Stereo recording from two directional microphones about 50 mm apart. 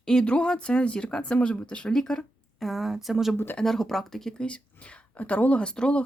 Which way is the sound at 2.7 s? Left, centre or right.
Centre.